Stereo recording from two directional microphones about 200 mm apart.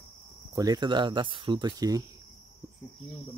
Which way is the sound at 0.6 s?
20° right (ahead or behind).